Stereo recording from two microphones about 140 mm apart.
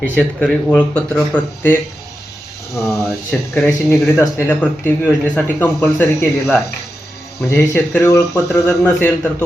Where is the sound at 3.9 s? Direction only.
20° left (ahead or behind).